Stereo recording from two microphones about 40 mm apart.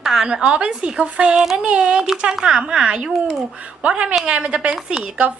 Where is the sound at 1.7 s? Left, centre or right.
Right.